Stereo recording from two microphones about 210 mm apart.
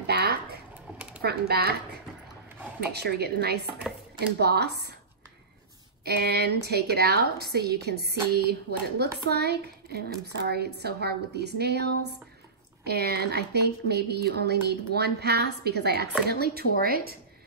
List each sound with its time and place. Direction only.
0.0 s a sound: 50° right (ahead or behind)
1.2 s speech: 50° right (ahead or behind)
2.8 s speech: 50° right (ahead or behind)
6.0 s speech: 50° right (ahead or behind)